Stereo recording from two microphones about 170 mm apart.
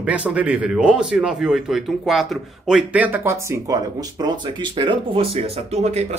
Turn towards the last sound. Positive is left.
turn(degrees=-40)  # may be behind; listen again after turning